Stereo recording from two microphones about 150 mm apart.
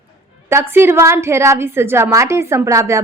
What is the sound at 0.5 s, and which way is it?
A woman's voice, 15° right (ahead or behind).